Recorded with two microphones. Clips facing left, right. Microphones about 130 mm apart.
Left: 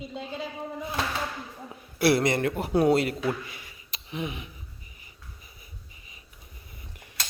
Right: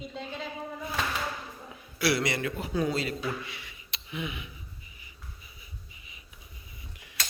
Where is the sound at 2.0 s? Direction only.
50° left (ahead or behind).